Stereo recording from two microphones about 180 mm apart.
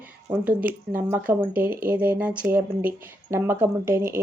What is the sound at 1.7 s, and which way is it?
Speech, 50° right (ahead or behind).